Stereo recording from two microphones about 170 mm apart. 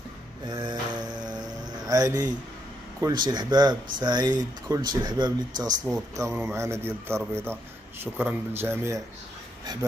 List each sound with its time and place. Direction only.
0.5 s mantra: 25° right (ahead or behind)
3.1 s speech: 25° right (ahead or behind)
9.7 s speech: 25° right (ahead or behind)